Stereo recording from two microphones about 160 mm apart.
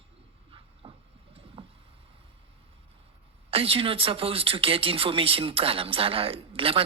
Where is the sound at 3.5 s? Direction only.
35° right (ahead or behind).